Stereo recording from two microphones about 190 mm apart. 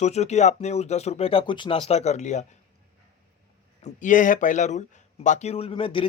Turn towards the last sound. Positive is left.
turn(degrees=30)  # may be behind; listen again after turning